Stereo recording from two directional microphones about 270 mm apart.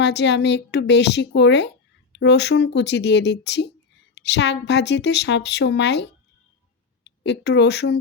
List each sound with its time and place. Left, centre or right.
0.0 s a woman's voice: left
7.3 s a woman's voice: left